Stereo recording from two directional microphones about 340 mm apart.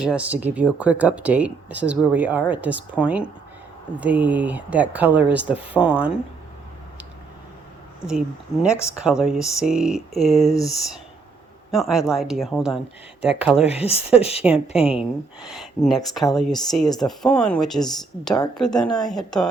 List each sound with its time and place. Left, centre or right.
0.0 s speech: centre
8.8 s speech: centre
13.7 s speech: centre
14.4 s speech: centre